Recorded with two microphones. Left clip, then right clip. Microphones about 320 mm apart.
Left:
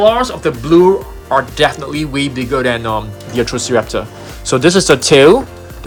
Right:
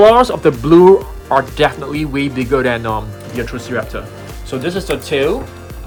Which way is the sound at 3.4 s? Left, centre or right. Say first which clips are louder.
Left 7 dB; centre.